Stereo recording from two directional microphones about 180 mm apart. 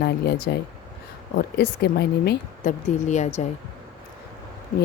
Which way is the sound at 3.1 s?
40° left (ahead or behind).